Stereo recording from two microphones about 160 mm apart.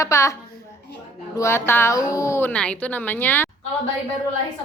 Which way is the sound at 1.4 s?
15° left (ahead or behind).